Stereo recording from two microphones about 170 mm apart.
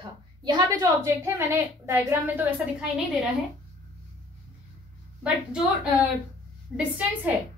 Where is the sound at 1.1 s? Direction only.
10° right (ahead or behind).